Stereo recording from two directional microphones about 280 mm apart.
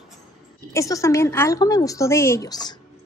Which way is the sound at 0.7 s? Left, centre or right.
Centre.